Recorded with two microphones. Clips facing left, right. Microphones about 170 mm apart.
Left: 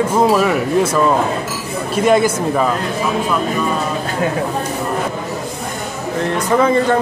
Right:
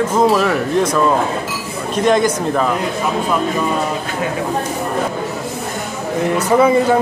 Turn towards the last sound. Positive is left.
turn(degrees=-10)  # may be behind; listen again after turning